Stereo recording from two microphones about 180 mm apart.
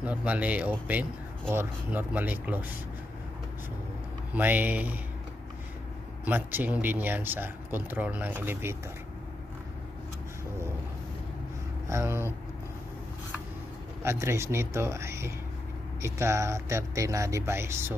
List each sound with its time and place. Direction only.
0.0 s speech: 10° right (ahead or behind)
4.3 s speech: 10° right (ahead or behind)
6.2 s speech: 10° right (ahead or behind)
11.9 s speech: 15° right (ahead or behind)
14.0 s speech: 15° right (ahead or behind)